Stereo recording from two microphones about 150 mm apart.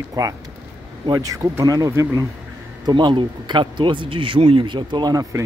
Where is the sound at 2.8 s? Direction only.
30° right (ahead or behind).